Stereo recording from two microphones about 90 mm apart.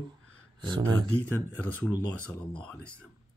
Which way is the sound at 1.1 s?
20° left (ahead or behind).